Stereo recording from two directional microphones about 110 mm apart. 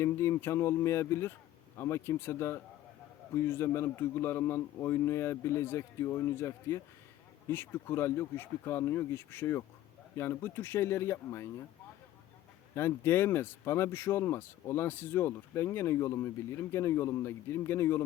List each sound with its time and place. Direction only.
0.0 s speech: 25° left (ahead or behind)
12.7 s speech: 20° left (ahead or behind)